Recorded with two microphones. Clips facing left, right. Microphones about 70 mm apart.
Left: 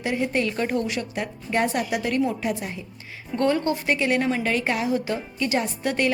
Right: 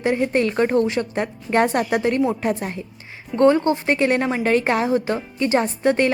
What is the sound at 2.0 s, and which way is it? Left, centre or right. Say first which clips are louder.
Speech: right 4 dB; right.